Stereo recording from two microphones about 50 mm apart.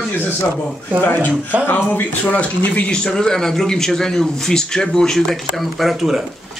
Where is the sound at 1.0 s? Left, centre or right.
Left.